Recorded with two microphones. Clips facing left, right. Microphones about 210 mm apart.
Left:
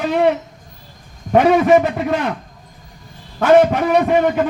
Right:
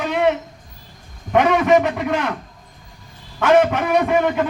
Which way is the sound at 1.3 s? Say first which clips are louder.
Left 3 dB; 35° left (ahead or behind).